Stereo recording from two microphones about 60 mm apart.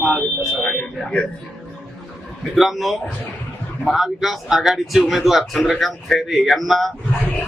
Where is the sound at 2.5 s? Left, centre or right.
Centre.